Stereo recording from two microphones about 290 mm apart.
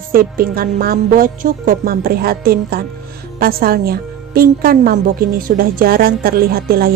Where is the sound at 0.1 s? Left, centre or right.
Right.